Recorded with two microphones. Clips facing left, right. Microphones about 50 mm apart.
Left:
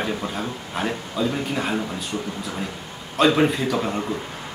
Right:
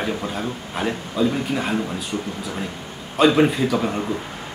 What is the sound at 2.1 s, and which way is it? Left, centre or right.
Speech, centre.